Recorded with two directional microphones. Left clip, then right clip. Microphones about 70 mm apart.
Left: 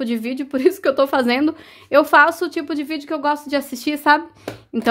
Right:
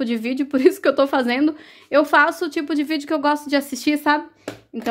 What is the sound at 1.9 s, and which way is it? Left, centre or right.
Speech, centre.